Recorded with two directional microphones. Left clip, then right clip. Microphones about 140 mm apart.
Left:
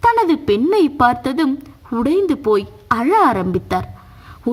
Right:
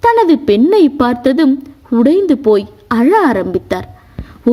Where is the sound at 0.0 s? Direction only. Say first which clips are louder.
Right 4 dB; 25° right (ahead or behind).